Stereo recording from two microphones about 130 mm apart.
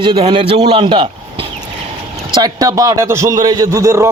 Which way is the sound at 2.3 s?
30° right (ahead or behind).